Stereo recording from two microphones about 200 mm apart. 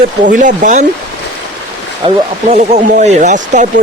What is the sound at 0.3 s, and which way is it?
Speech, 40° right (ahead or behind).